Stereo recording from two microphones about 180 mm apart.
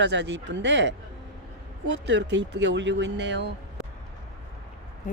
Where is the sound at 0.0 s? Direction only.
75° right (ahead or behind).